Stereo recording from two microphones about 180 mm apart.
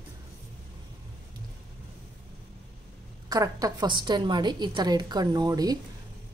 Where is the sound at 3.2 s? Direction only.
20° right (ahead or behind).